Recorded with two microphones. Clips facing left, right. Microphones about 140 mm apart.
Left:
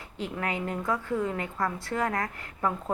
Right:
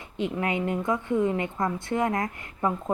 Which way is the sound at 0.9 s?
20° right (ahead or behind).